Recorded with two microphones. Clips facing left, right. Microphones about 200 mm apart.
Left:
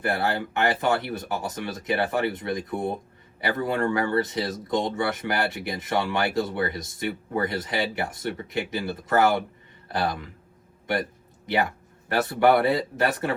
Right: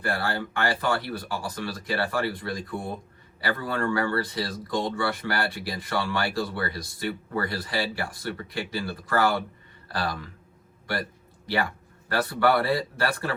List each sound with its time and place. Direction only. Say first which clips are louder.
0.0 s speech: left 3 dB; 20° left (ahead or behind)
11.4 s speech: left 3 dB; 20° left (ahead or behind)